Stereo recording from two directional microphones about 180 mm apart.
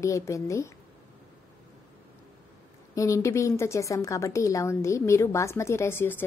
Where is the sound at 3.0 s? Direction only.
15° left (ahead or behind).